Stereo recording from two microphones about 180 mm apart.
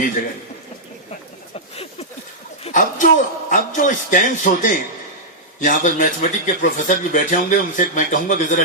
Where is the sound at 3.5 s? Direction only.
45° left (ahead or behind).